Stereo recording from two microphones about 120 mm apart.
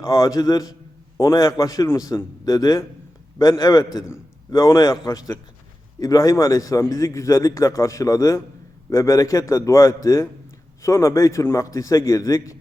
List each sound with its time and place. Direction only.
0.0 s a man's voice: 30° left (ahead or behind)